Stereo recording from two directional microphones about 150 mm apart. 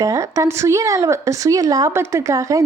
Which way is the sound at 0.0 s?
20° right (ahead or behind).